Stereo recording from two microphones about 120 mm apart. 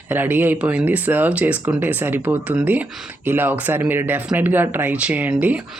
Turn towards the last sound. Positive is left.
turn(degrees=-15)  # may be behind; listen again after turning